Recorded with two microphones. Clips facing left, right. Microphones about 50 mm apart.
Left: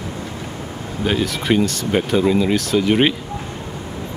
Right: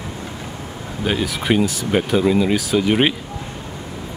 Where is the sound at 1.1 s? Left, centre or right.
Centre.